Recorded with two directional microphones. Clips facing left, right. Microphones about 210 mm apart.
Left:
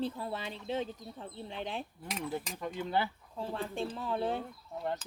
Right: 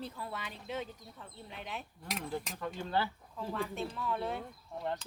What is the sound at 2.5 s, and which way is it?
Speech, 15° left (ahead or behind).